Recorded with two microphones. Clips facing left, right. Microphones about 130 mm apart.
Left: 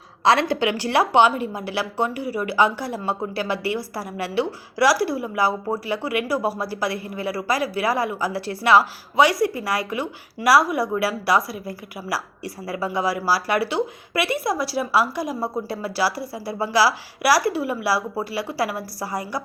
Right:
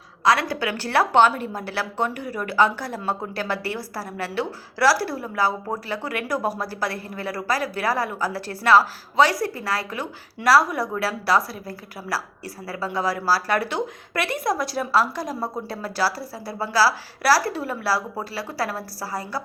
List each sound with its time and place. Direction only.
0.3 s a woman's voice: 25° left (ahead or behind)